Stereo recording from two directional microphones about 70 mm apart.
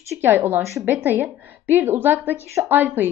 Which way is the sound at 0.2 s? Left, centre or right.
Right.